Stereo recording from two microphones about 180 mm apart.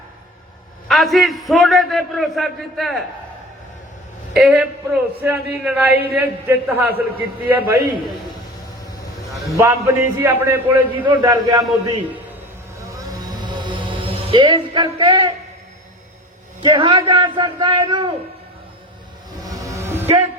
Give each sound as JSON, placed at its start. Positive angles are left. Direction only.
{"t": 0.9, "sound": "a man's voice", "side_deg": 0}
{"t": 4.4, "sound": "a man's voice", "side_deg": -5}
{"t": 9.6, "sound": "a man's voice", "side_deg": -15}
{"t": 11.0, "sound": "a man's voice", "side_deg": -20}
{"t": 13.1, "sound": "music", "side_deg": -20}
{"t": 16.6, "sound": "a man's voice", "side_deg": -25}
{"t": 19.5, "sound": "music", "side_deg": -20}